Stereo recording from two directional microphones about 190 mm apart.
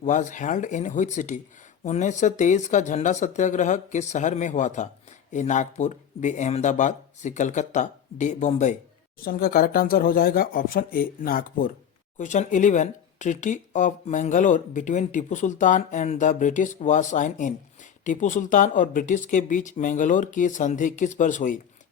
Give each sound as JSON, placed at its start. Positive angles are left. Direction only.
{"t": 0.0, "sound": "speech", "side_deg": 40}
{"t": 9.2, "sound": "speech", "side_deg": 50}